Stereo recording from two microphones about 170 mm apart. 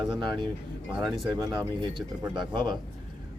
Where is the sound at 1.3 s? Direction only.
25° right (ahead or behind).